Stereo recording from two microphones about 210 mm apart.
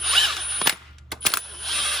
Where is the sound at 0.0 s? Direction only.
Centre (ahead or behind).